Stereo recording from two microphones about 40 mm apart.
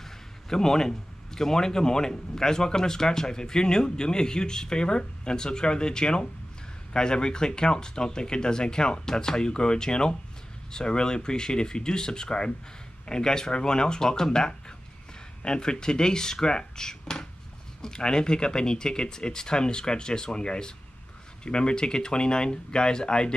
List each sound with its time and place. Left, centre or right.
0.5 s a man's voice: centre